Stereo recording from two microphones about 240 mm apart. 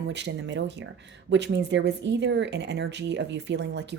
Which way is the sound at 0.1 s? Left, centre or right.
Right.